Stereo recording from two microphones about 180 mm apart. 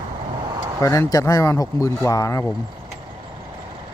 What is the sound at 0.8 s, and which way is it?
Speech, 20° left (ahead or behind).